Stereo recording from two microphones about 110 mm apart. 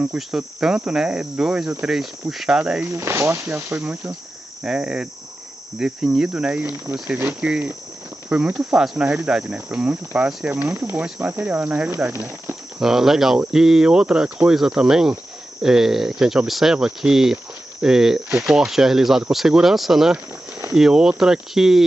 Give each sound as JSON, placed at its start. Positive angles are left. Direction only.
{"t": 0.1, "sound": "cricket", "side_deg": -5}
{"t": 2.9, "sound": "speech", "side_deg": -25}
{"t": 4.6, "sound": "cricket", "side_deg": -10}
{"t": 11.9, "sound": "speech", "side_deg": -20}
{"t": 12.7, "sound": "speech", "side_deg": -5}